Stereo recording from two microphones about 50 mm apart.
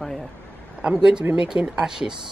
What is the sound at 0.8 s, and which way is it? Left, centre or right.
Speech, centre.